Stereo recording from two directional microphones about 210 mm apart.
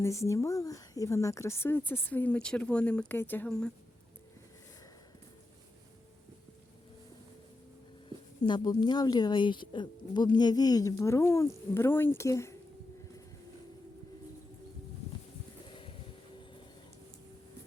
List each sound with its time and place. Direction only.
0.0 s speech: 15° left (ahead or behind)
8.4 s speech: 20° left (ahead or behind)
15.6 s a sound: 25° left (ahead or behind)